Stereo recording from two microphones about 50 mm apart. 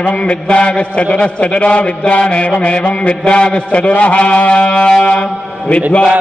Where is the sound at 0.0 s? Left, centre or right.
Left.